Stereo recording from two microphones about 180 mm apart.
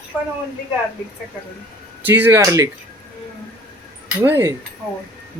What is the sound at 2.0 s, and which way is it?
Speech, 10° right (ahead or behind).